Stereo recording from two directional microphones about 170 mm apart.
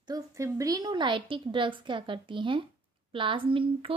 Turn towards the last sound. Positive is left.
turn(degrees=-30)  # may be behind; listen again after turning